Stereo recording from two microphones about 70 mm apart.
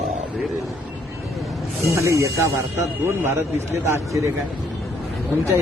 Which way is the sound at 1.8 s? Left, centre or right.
Right.